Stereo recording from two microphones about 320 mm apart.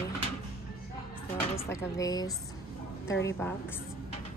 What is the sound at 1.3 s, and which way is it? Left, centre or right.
Speech, centre.